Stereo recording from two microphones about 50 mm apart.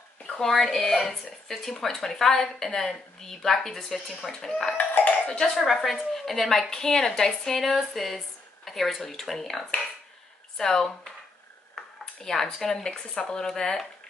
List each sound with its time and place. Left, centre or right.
0.3 s a woman's voice: centre
4.7 s a sound: left
5.4 s a woman's voice: centre
12.2 s a woman's voice: centre